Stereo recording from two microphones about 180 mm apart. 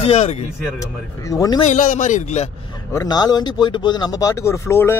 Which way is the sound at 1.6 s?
45° left (ahead or behind).